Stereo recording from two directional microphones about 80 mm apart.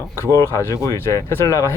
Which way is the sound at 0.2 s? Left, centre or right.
Left.